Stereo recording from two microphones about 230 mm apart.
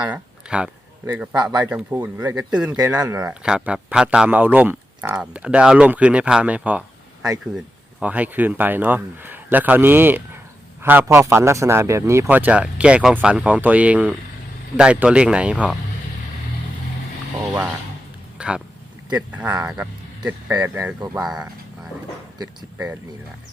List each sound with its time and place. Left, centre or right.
0.0 s speech: centre
18.3 s a sound: centre
19.1 s speech: centre